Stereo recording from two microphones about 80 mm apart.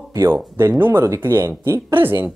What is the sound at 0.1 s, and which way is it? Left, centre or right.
Speech, right.